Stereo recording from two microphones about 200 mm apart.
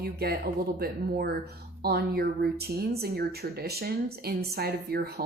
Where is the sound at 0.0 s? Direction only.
50° right (ahead or behind).